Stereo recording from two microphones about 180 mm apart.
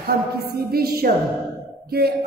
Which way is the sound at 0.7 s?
60° right (ahead or behind).